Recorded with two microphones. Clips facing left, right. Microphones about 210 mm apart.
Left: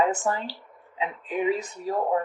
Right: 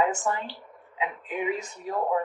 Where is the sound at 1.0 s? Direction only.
35° left (ahead or behind).